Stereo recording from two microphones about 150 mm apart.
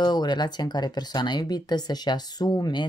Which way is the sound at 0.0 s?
30° left (ahead or behind).